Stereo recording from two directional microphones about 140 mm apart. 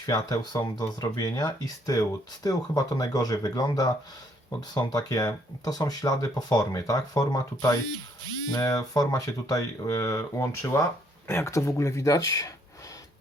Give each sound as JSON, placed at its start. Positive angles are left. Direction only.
{"t": 0.0, "sound": "speech", "side_deg": 30}